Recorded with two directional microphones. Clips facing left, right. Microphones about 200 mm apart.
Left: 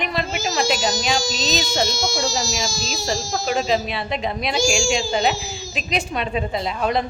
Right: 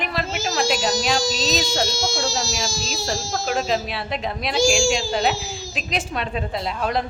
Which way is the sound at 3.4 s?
5° right (ahead or behind).